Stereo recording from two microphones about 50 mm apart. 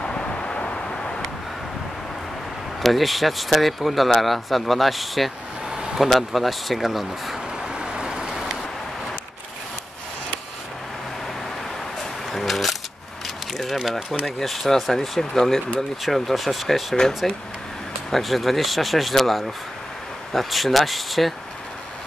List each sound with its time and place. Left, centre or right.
0.0 s vehicle: left
2.8 s speech: centre
7.6 s vehicle: centre
8.3 s vehicle: centre
12.0 s a sound: centre
14.2 s speech: centre